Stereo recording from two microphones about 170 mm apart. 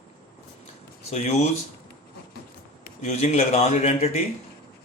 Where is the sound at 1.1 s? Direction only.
40° left (ahead or behind).